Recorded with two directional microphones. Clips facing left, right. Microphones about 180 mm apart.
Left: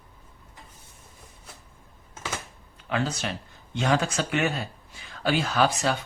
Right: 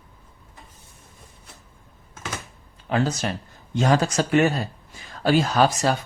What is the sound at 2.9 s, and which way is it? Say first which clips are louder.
Speech: right 5 dB; 40° right (ahead or behind).